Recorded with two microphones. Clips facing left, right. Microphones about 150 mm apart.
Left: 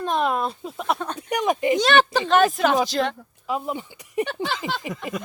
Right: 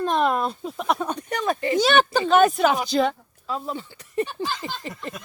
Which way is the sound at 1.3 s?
15° left (ahead or behind).